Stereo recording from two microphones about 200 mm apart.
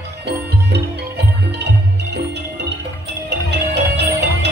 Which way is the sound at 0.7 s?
55° right (ahead or behind).